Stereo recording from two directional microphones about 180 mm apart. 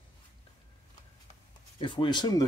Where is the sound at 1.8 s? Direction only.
25° left (ahead or behind).